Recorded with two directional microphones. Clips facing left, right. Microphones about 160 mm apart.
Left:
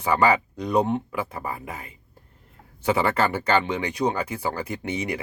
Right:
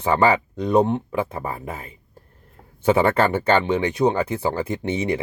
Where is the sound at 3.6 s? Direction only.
25° right (ahead or behind).